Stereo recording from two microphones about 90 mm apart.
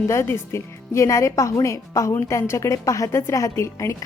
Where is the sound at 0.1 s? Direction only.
30° left (ahead or behind).